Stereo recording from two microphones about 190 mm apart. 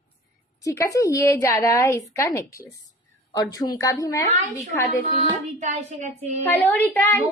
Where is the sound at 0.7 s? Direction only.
15° left (ahead or behind).